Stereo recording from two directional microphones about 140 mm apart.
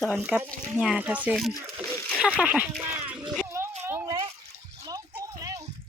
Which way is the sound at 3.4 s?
20° right (ahead or behind).